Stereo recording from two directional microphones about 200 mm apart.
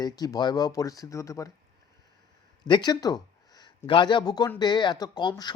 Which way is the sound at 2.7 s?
20° left (ahead or behind).